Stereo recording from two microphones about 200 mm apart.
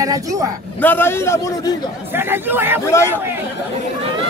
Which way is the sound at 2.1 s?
10° right (ahead or behind).